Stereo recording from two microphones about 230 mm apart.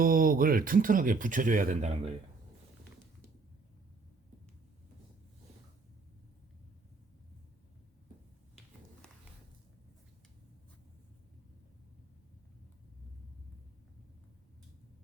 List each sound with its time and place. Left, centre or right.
0.0 s speech: right